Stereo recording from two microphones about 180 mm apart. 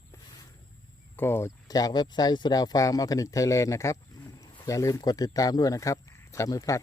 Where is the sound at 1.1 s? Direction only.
15° left (ahead or behind).